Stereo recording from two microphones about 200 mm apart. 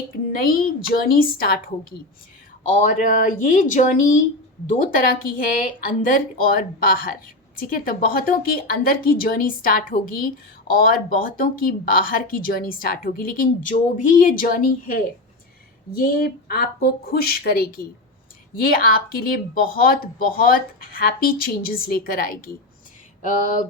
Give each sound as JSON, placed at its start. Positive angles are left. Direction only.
{"t": 0.3, "sound": "speech", "side_deg": 45}